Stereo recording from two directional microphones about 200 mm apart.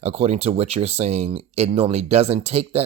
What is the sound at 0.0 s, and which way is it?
Speech, 30° right (ahead or behind).